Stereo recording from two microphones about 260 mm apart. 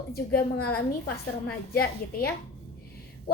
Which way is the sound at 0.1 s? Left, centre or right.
Left.